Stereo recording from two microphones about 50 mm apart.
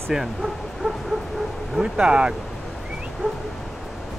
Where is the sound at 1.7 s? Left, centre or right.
Centre.